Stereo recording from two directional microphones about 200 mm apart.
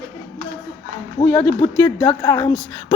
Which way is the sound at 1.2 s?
10° left (ahead or behind).